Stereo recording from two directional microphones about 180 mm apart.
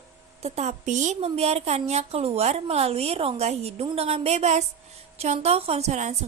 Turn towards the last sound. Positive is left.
turn(degrees=-40)  # may be behind; listen again after turning